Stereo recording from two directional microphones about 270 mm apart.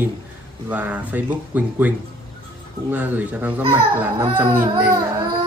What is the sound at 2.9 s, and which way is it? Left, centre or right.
Speech, centre.